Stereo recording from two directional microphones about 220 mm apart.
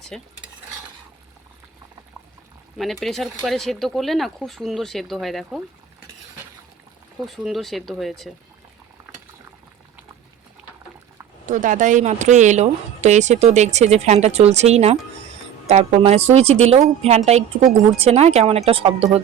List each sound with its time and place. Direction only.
0.1 s speech: centre (ahead or behind)
2.7 s speech: centre (ahead or behind)
7.3 s speech: centre (ahead or behind)
11.4 s a woman's voice: 35° right (ahead or behind)